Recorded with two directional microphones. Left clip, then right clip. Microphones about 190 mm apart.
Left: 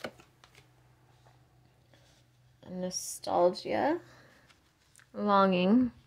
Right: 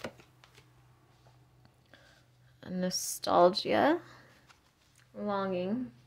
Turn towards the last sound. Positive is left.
turn(degrees=45)  # may be behind; listen again after turning